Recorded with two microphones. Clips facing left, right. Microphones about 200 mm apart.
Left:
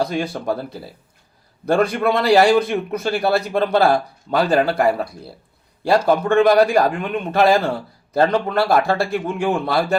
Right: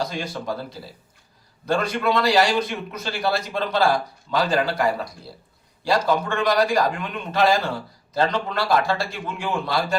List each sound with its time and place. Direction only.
0.0 s a man's voice: 60° left (ahead or behind)